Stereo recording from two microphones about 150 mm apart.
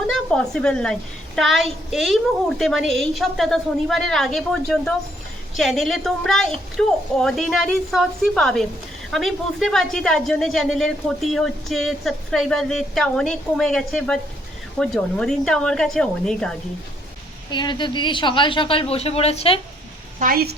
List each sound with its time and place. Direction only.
0.1 s a woman's voice: 5° left (ahead or behind)
17.5 s a woman's voice: 30° left (ahead or behind)
20.1 s speech: 75° right (ahead or behind)